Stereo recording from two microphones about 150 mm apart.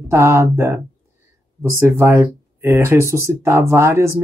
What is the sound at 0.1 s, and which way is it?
Speech, 15° right (ahead or behind).